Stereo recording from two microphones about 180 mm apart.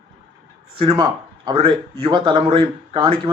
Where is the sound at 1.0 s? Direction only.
25° right (ahead or behind).